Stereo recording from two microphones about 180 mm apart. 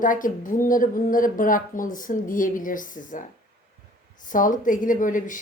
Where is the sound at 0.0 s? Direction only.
50° left (ahead or behind).